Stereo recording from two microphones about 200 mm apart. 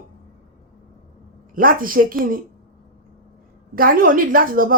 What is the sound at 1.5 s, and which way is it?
Speech, 45° right (ahead or behind).